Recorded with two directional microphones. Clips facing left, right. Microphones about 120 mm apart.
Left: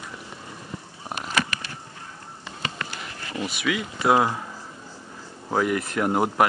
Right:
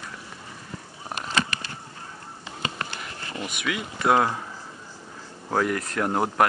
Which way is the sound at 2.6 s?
30° right (ahead or behind).